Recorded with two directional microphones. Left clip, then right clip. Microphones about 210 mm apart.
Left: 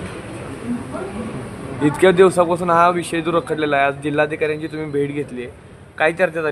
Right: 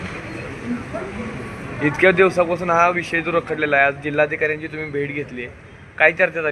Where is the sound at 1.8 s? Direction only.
30° left (ahead or behind).